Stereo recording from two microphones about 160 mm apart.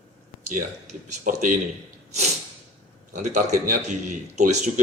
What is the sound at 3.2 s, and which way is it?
A man's voice, 50° right (ahead or behind).